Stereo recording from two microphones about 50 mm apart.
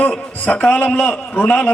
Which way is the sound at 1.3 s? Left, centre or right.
Left.